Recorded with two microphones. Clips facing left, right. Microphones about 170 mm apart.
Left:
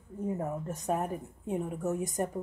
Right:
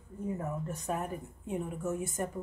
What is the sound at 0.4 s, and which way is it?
Speech, 40° left (ahead or behind).